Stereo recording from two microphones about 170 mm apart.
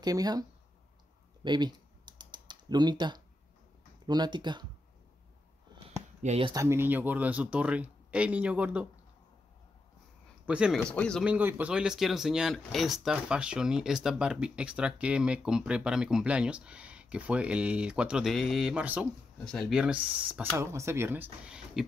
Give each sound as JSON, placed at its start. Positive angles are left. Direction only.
{"t": 0.0, "sound": "speech", "side_deg": -20}
{"t": 1.4, "sound": "typing", "side_deg": -25}
{"t": 4.0, "sound": "speech", "side_deg": -25}
{"t": 6.2, "sound": "speech", "side_deg": -35}
{"t": 6.5, "sound": "speech", "side_deg": -15}
{"t": 10.4, "sound": "speech", "side_deg": -5}
{"t": 10.8, "sound": "speech", "side_deg": 5}
{"t": 11.2, "sound": "speech", "side_deg": -10}